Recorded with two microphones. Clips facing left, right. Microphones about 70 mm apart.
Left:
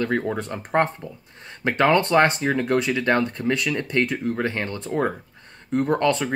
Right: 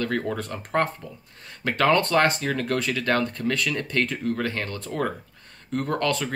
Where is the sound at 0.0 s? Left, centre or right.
Left.